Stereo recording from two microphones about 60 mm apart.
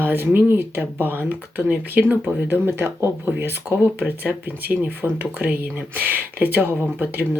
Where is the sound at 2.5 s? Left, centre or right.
Right.